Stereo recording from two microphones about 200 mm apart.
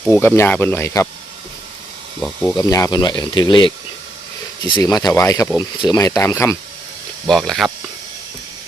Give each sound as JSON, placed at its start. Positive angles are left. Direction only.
{"t": 0.1, "sound": "speech", "side_deg": 10}
{"t": 2.6, "sound": "speech", "side_deg": 15}
{"t": 4.7, "sound": "speech", "side_deg": 15}
{"t": 7.3, "sound": "speech", "side_deg": 0}